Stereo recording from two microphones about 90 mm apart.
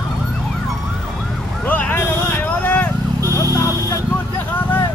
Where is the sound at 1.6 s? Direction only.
20° left (ahead or behind).